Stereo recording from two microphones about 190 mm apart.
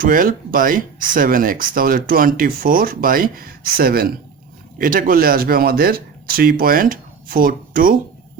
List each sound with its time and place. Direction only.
0.0 s speech: 45° right (ahead or behind)